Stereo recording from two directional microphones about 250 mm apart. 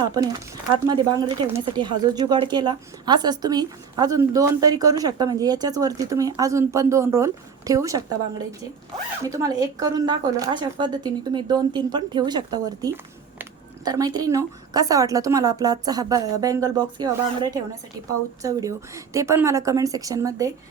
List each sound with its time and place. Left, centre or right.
0.0 s a woman's voice: centre
9.2 s a woman's voice: centre